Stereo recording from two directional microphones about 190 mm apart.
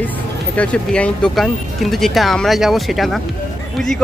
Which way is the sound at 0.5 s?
5° left (ahead or behind).